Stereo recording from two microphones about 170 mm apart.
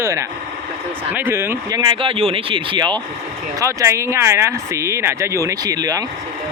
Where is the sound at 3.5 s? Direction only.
15° right (ahead or behind).